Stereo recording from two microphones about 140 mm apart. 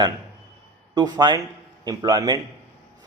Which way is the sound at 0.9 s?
30° right (ahead or behind).